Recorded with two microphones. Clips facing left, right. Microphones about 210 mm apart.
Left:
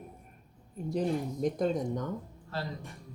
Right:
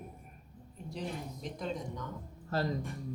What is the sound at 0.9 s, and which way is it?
A woman's voice, 45° left (ahead or behind).